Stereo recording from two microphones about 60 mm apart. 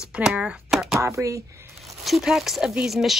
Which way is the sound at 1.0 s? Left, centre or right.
Right.